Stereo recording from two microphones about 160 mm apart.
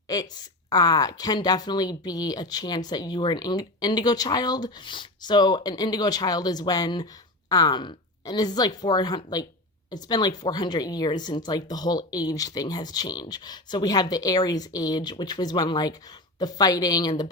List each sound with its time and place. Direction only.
0.1 s speech: 25° left (ahead or behind)